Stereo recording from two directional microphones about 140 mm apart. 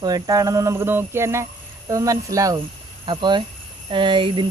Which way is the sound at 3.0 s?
35° right (ahead or behind).